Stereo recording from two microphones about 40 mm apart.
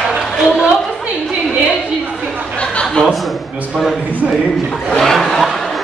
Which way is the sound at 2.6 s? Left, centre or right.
Left.